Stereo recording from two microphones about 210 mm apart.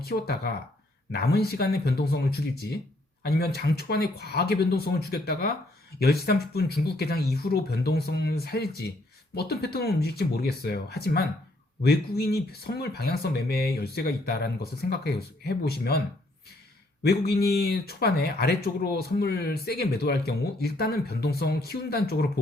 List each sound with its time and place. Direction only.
0.0 s speech: 50° left (ahead or behind)
17.0 s speech: 50° left (ahead or behind)